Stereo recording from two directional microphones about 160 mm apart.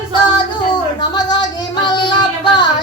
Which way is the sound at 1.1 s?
25° left (ahead or behind).